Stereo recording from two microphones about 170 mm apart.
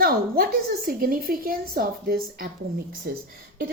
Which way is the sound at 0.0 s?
65° right (ahead or behind).